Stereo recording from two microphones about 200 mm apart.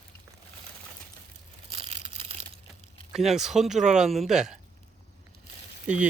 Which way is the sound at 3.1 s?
Centre (ahead or behind).